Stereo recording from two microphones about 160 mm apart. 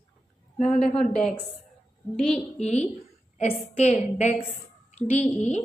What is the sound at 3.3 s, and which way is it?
A woman's voice, 40° left (ahead or behind).